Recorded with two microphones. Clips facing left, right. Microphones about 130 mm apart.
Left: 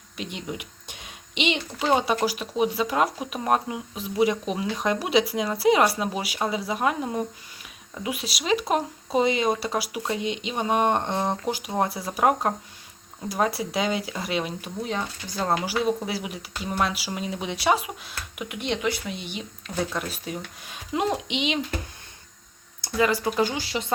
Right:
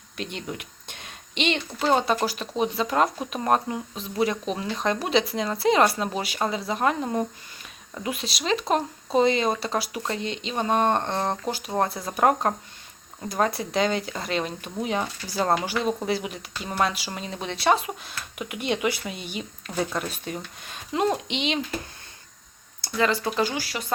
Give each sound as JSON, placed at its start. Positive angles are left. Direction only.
{"t": 0.2, "sound": "speech", "side_deg": 10}
{"t": 14.8, "sound": "speech", "side_deg": -10}
{"t": 22.8, "sound": "speech", "side_deg": 10}